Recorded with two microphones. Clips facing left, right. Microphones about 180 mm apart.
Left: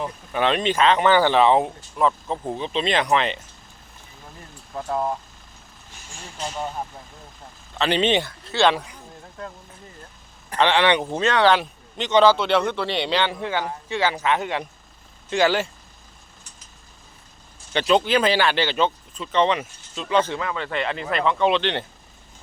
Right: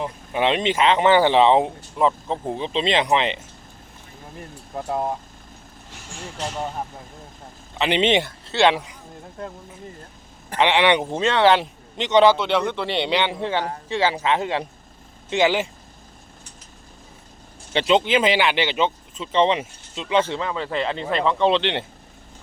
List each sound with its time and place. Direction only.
0.0 s a man's voice: 20° right (ahead or behind)
5.9 s speech: 70° right (ahead or behind)
7.8 s a man's voice: 20° right (ahead or behind)
10.6 s a man's voice: 20° right (ahead or behind)
15.3 s speech: 20° right (ahead or behind)
17.7 s a man's voice: 20° right (ahead or behind)